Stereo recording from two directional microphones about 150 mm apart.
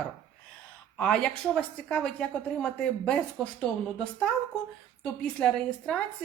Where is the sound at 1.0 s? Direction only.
5° left (ahead or behind).